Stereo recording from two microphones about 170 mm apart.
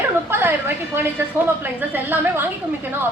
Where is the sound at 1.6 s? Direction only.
10° right (ahead or behind).